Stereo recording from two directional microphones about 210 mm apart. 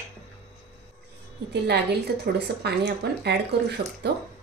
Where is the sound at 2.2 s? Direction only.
50° right (ahead or behind).